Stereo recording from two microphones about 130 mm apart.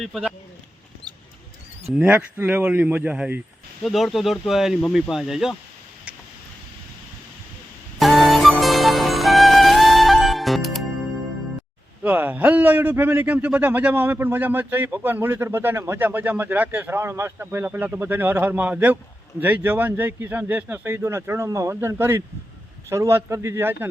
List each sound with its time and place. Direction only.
0.0 s speech: 5° right (ahead or behind)
2.0 s a man's voice: 15° right (ahead or behind)
3.8 s speech: centre (ahead or behind)
7.9 s music: centre (ahead or behind)
12.0 s a man's voice: 15° right (ahead or behind)